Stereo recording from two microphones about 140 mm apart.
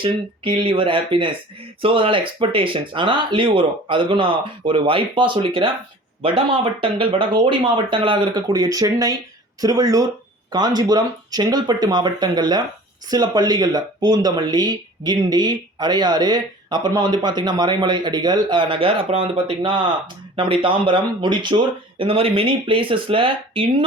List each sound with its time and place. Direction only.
0.0 s speech: 35° right (ahead or behind)